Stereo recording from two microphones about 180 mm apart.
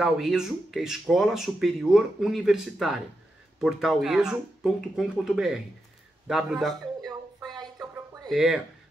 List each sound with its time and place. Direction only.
0.0 s a man's voice: centre (ahead or behind)
7.1 s a sound: 20° right (ahead or behind)
8.3 s speech: 5° right (ahead or behind)